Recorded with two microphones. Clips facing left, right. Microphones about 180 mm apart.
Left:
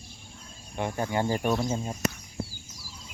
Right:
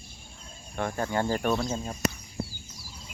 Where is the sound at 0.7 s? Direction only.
15° left (ahead or behind).